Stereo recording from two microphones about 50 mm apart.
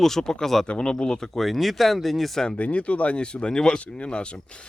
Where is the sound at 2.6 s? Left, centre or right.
Left.